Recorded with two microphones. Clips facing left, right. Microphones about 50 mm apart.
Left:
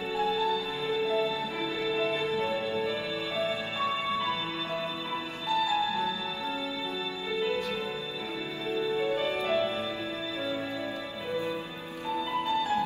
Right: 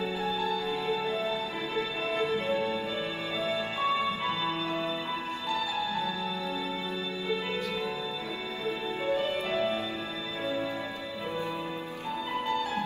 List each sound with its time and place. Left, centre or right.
0.3 s music: right
2.7 s music: left
3.4 s music: right
5.6 s music: left
7.2 s music: right
9.1 s music: left
12.3 s music: right